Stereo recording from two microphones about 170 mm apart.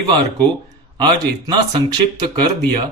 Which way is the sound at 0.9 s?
25° right (ahead or behind).